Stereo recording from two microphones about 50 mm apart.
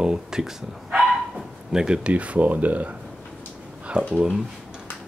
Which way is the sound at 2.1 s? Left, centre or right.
Right.